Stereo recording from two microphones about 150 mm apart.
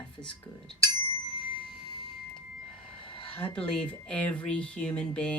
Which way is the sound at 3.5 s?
5° left (ahead or behind).